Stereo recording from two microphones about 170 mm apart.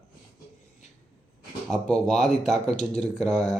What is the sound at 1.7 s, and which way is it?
Speech, 5° left (ahead or behind).